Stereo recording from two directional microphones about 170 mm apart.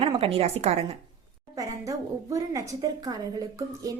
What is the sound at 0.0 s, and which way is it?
Speech, 35° right (ahead or behind).